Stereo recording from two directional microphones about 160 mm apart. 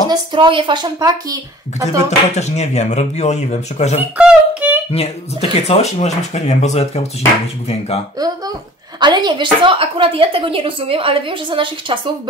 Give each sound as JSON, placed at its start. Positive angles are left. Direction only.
{"t": 0.1, "sound": "speech", "side_deg": -30}
{"t": 2.0, "sound": "speech", "side_deg": 45}
{"t": 4.2, "sound": "a sound", "side_deg": -10}
{"t": 4.9, "sound": "speech", "side_deg": 40}
{"t": 9.0, "sound": "a woman's voice", "side_deg": -25}